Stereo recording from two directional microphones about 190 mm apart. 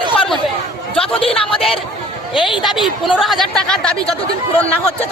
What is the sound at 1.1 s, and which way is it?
Speech, 30° left (ahead or behind).